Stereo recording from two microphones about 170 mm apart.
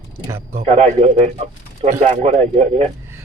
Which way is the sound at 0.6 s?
40° right (ahead or behind).